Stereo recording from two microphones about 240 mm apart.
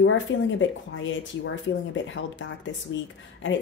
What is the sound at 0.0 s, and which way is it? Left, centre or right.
A woman's voice, left.